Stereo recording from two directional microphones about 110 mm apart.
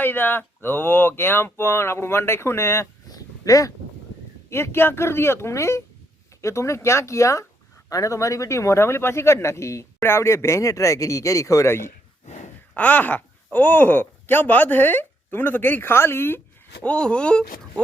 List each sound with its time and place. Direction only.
0.0 s speech: 20° left (ahead or behind)
3.1 s a sound: 30° left (ahead or behind)
4.4 s speech: 25° left (ahead or behind)
16.8 s speech: 10° left (ahead or behind)